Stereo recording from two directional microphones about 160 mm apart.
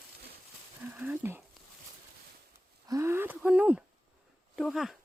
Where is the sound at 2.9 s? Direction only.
15° right (ahead or behind); by 4.9 s centre (ahead or behind).